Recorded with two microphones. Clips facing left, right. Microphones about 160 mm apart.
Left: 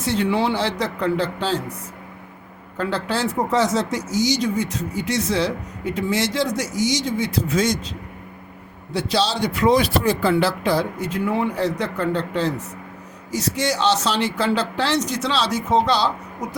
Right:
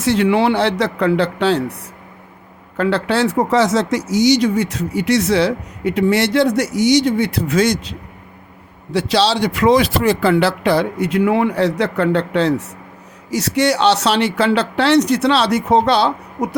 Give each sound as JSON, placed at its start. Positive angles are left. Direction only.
{"t": 0.0, "sound": "speech", "side_deg": -80}
{"t": 2.7, "sound": "speech", "side_deg": -75}
{"t": 8.9, "sound": "speech", "side_deg": -90}